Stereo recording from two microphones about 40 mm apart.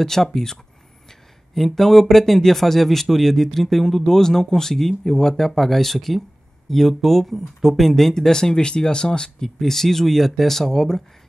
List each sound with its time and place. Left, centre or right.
0.0 s speech: centre